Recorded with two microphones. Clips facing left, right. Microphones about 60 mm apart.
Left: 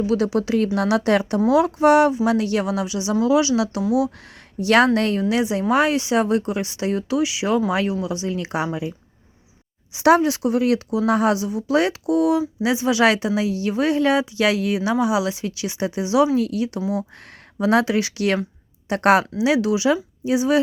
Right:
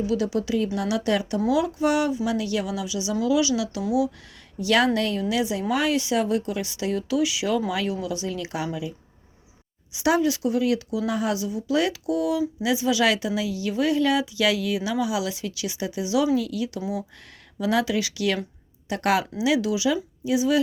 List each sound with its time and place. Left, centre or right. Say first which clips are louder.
0.1 s speech: left 4 dB; left
0.3 s speech: left 5 dB; left
9.9 s speech: left 6 dB; left